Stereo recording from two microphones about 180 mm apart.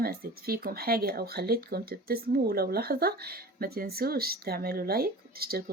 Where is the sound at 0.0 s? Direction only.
55° right (ahead or behind).